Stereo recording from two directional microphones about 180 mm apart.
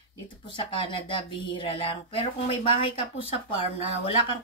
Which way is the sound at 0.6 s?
30° left (ahead or behind).